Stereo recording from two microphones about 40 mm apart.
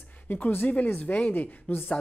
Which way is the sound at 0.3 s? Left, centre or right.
Left.